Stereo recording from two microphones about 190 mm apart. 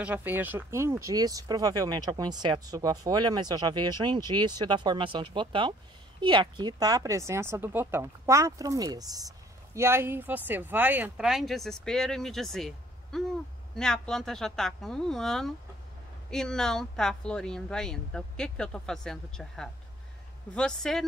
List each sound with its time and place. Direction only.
0.0 s speech: 10° right (ahead or behind)